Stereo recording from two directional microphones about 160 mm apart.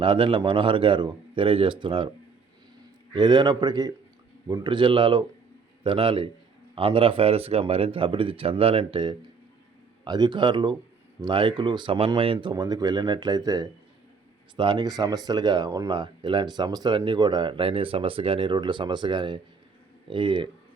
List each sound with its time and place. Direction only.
0.0 s speech: 35° right (ahead or behind)
3.1 s speech: 30° right (ahead or behind)